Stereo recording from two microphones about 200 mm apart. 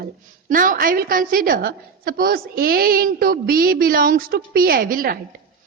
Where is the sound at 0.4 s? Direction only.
40° right (ahead or behind).